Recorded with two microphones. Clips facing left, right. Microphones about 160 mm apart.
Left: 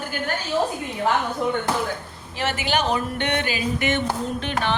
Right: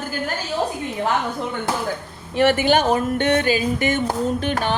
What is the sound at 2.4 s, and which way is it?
A woman's voice, 55° right (ahead or behind).